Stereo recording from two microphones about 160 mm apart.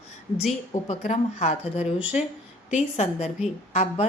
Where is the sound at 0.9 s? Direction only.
40° left (ahead or behind).